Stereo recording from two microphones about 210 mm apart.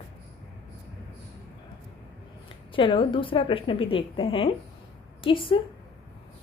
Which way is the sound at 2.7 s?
25° left (ahead or behind).